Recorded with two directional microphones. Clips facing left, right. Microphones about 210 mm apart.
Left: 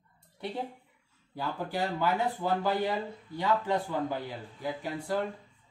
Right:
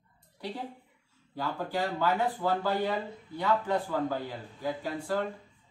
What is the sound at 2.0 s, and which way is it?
Speech, 15° left (ahead or behind).